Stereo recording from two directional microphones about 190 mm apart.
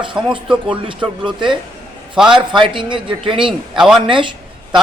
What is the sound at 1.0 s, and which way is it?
A man's voice, 5° right (ahead or behind).